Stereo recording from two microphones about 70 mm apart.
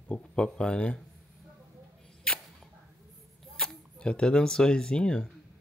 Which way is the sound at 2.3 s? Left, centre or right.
Centre.